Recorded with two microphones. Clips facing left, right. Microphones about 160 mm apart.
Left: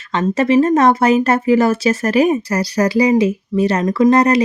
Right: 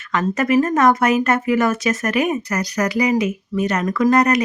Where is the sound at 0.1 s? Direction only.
30° left (ahead or behind).